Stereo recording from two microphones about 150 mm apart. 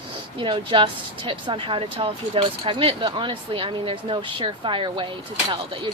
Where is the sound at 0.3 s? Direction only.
35° right (ahead or behind).